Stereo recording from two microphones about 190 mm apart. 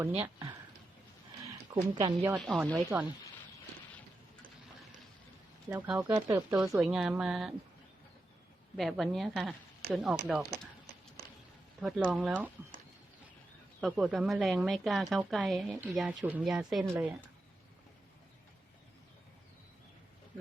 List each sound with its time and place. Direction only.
0.2 s speech: 25° right (ahead or behind)
1.7 s speech: 25° right (ahead or behind)
2.3 s a woman's voice: centre (ahead or behind)
5.6 s speech: 15° right (ahead or behind)
6.6 s a woman's voice: 5° right (ahead or behind)
8.7 s a woman's voice: centre (ahead or behind)
11.8 s a woman's voice: centre (ahead or behind)
13.8 s a woman's voice: centre (ahead or behind)